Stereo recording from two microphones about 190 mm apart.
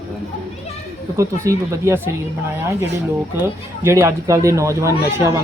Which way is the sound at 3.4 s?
15° right (ahead or behind).